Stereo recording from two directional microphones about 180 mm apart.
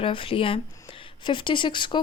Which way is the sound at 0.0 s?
30° left (ahead or behind).